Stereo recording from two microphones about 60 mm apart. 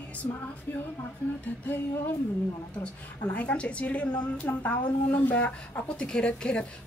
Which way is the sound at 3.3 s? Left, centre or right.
Left.